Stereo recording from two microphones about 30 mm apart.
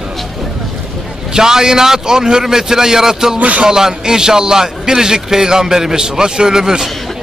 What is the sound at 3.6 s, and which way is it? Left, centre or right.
A man's voice, centre.